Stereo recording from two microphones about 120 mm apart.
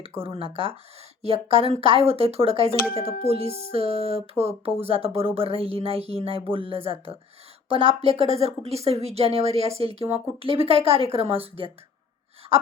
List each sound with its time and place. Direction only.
0.2 s speech: 50° right (ahead or behind)